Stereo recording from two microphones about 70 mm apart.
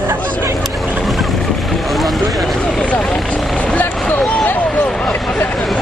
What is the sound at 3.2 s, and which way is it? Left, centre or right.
Vehicle, centre.